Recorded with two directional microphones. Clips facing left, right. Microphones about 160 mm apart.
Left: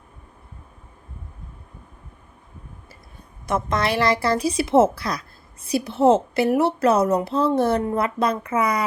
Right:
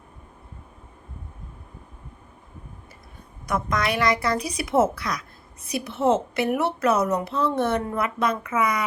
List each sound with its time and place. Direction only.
3.4 s a woman's voice: 25° left (ahead or behind)